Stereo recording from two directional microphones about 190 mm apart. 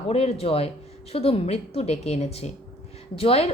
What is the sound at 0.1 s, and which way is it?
Speech, 30° left (ahead or behind).